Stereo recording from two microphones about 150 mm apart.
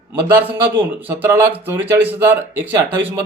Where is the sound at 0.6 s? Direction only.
15° right (ahead or behind).